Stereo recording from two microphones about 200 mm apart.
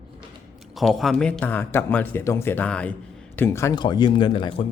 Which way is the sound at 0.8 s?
Centre (ahead or behind).